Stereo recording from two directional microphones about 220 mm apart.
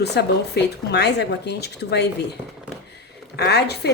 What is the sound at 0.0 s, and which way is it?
Speech, 50° left (ahead or behind).